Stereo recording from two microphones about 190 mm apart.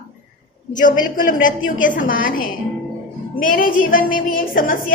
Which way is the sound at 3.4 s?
45° left (ahead or behind).